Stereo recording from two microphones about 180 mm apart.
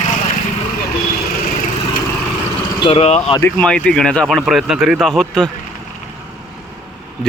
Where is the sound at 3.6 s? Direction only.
5° left (ahead or behind).